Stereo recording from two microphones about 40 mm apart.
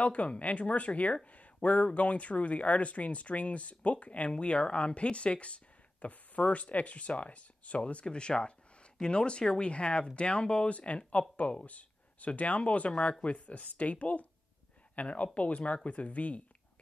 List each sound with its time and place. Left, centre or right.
0.0 s speech: left